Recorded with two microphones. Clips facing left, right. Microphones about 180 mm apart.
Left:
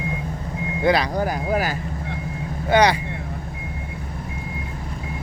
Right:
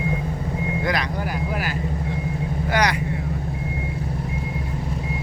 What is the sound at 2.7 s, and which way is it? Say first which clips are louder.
Speech: left 6 dB; 30° left (ahead or behind).